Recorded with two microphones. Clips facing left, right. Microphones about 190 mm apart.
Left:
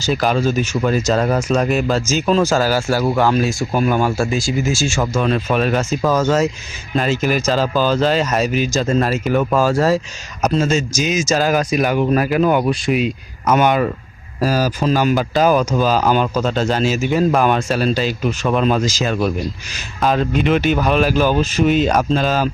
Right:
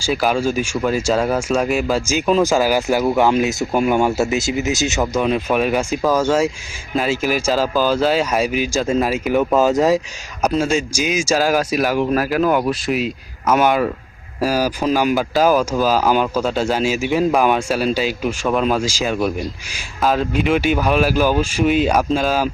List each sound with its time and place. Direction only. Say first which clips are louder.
0.0 s speech: left 1 dB; 5° right (ahead or behind)